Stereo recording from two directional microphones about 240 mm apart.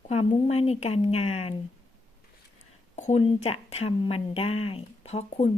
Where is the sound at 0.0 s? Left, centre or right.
Left.